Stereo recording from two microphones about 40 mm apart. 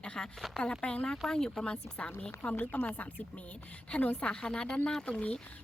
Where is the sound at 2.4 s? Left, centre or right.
Left.